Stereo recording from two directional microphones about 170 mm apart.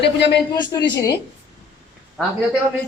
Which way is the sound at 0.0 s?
85° left.